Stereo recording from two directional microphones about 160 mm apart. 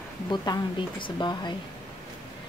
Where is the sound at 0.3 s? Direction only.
30° left (ahead or behind).